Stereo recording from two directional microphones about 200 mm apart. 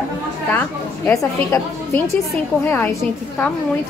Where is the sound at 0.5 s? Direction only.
10° left (ahead or behind).